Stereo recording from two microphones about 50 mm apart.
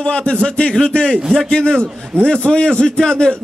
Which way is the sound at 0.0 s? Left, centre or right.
Centre.